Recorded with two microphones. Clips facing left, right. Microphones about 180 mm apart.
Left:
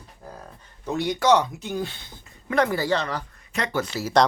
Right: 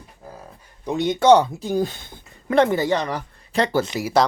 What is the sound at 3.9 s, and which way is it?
Speech, 10° right (ahead or behind).